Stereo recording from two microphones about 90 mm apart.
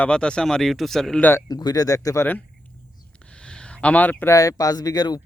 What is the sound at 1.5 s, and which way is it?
Speech, 45° left (ahead or behind).